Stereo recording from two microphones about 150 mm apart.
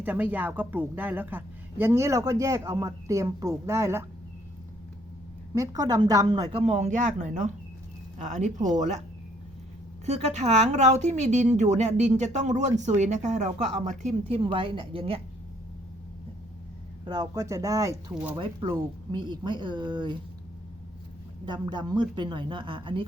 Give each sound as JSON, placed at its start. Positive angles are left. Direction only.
{"t": 0.0, "sound": "speech", "side_deg": -10}
{"t": 5.5, "sound": "a woman's voice", "side_deg": -25}
{"t": 10.1, "sound": "a woman's voice", "side_deg": -45}
{"t": 17.1, "sound": "speech", "side_deg": -25}
{"t": 18.1, "sound": "speech", "side_deg": -10}
{"t": 18.3, "sound": "speech", "side_deg": -35}
{"t": 21.4, "sound": "speech", "side_deg": -30}